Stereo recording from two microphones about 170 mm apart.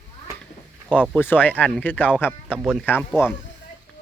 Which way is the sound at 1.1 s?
10° left (ahead or behind).